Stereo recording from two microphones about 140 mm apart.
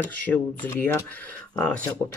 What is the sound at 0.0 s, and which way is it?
Speech, 10° left (ahead or behind).